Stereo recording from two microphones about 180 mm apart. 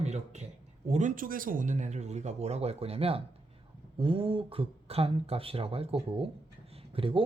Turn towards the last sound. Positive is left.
turn(degrees=-30)  # may be behind; listen again after turning